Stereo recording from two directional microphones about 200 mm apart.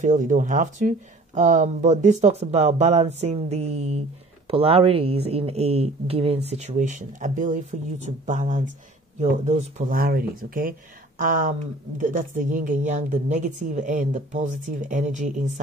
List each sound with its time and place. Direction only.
0.0 s speech: 40° right (ahead or behind)